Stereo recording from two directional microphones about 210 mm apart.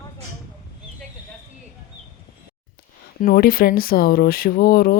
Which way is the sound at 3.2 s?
45° left (ahead or behind).